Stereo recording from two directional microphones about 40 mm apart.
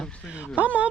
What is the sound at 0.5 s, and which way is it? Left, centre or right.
Speech, right.